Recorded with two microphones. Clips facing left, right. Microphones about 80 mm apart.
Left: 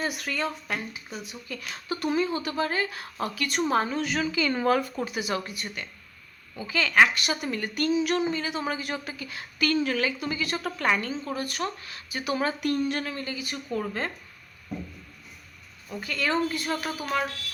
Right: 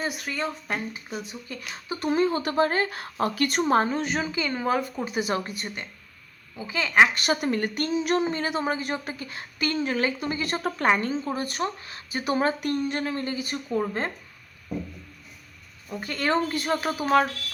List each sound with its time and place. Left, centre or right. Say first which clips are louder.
0.0 s speech: even; centre
2.2 s a woman's voice: right 5 dB; right
3.7 s a woman's voice: right 2 dB; right
5.2 s speech: right 2 dB; right
7.1 s a woman's voice: right 5 dB; right
16.0 s a woman's voice: right 2 dB; right